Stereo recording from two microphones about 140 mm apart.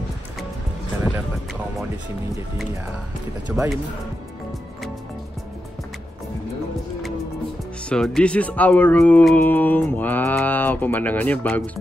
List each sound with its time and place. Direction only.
1.1 s music: 5° right (ahead or behind)
3.5 s speech: 5° right (ahead or behind)
7.9 s speech: 5° left (ahead or behind)